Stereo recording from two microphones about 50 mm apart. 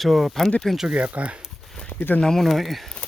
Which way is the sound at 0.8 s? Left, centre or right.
Right.